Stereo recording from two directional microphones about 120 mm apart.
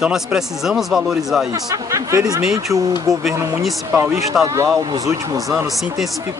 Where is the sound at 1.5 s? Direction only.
25° right (ahead or behind).